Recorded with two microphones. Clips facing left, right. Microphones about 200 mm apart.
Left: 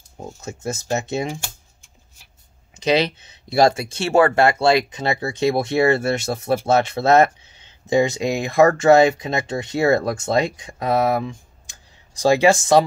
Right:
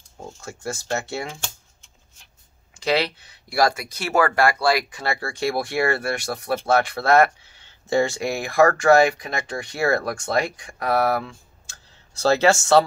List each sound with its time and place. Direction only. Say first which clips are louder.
0.2 s speech: left 3 dB; 20° left (ahead or behind)
2.7 s speech: left 4 dB; 20° left (ahead or behind)